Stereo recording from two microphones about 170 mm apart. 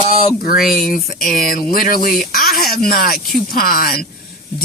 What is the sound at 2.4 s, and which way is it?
Speech, centre (ahead or behind).